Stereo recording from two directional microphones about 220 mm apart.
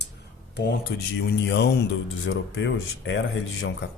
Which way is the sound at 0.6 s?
50° left (ahead or behind).